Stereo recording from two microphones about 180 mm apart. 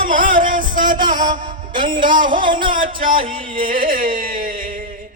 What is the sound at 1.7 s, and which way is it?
Music, 25° right (ahead or behind).